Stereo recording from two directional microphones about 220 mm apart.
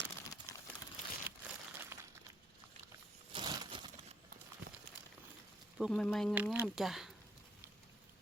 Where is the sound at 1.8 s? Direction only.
10° right (ahead or behind).